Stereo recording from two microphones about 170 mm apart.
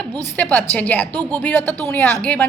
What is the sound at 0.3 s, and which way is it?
A woman's voice, 10° left (ahead or behind).